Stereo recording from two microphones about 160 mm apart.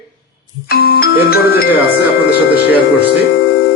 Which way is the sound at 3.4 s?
75° left (ahead or behind).